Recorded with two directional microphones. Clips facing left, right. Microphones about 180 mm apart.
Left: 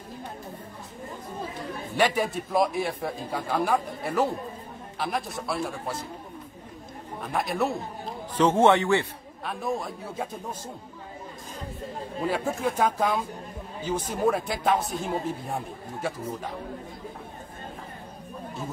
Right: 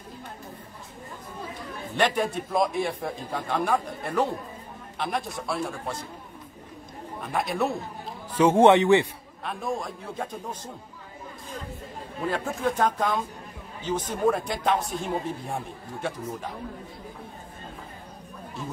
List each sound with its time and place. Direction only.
2.0 s a man's voice: 5° left (ahead or behind)
7.2 s a man's voice: centre (ahead or behind)
8.4 s a man's voice: 15° right (ahead or behind)
9.4 s a man's voice: centre (ahead or behind)
12.3 s a man's voice: 10° left (ahead or behind)